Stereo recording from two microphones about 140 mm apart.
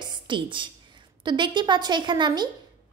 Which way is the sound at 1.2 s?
35° right (ahead or behind).